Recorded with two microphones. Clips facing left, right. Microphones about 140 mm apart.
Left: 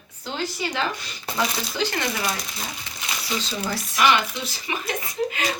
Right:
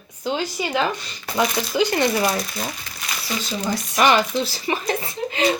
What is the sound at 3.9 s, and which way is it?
Speech, 45° right (ahead or behind).